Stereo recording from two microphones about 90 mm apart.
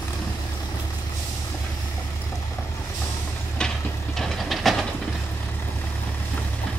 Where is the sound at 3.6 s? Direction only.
10° left (ahead or behind).